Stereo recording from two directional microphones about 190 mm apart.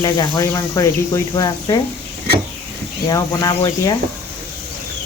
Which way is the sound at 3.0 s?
20° left (ahead or behind).